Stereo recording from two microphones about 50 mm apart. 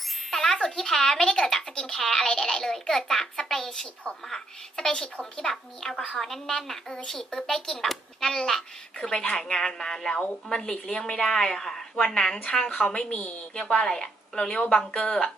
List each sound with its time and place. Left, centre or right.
0.3 s speech: centre
13.6 s speech: centre